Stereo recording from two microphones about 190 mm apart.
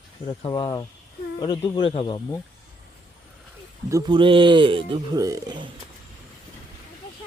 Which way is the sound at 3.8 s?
20° right (ahead or behind).